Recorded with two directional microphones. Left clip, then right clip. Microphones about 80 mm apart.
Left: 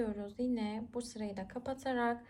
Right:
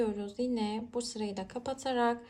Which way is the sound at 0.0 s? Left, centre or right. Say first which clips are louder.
Right 5 dB; centre.